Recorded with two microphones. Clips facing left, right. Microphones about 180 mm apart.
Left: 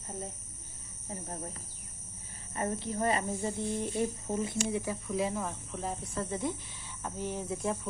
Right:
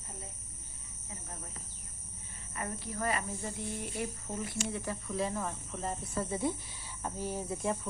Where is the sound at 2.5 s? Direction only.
25° left (ahead or behind).